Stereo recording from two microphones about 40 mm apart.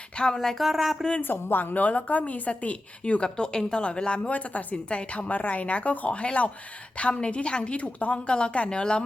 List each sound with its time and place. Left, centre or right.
0.2 s speech: left
0.6 s a sound: centre
1.2 s speech: left
1.7 s a woman's voice: left
4.2 s a woman's voice: left
5.3 s a woman's voice: left
8.3 s speech: left